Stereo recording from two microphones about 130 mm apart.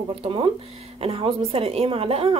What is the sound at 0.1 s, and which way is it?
A woman's voice, 45° right (ahead or behind).